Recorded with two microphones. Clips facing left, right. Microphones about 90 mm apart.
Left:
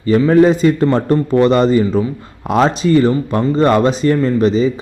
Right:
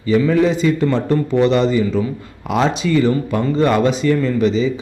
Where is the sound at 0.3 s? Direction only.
45° left (ahead or behind).